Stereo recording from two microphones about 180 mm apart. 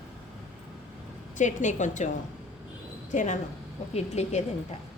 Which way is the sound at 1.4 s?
45° left (ahead or behind).